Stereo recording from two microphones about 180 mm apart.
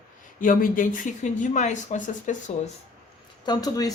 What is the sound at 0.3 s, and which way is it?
Speech, 50° left (ahead or behind).